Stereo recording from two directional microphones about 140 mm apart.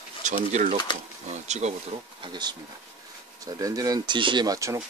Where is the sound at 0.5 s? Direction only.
60° right (ahead or behind).